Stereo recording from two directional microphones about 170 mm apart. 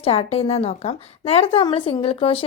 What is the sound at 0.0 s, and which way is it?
A woman's voice, 35° left (ahead or behind).